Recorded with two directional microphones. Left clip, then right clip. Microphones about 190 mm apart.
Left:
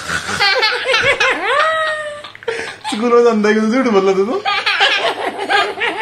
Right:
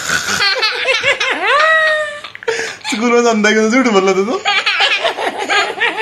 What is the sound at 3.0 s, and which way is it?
Speech, 20° right (ahead or behind).